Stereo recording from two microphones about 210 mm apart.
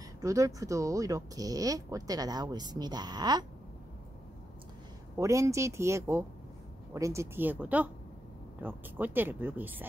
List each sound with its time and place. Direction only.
0.2 s speech: 15° right (ahead or behind)
5.1 s speech: 15° right (ahead or behind)